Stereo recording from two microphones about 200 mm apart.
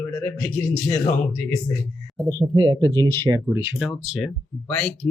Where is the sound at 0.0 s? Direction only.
10° left (ahead or behind).